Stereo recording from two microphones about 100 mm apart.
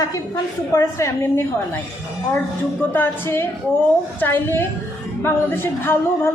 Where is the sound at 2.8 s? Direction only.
20° left (ahead or behind).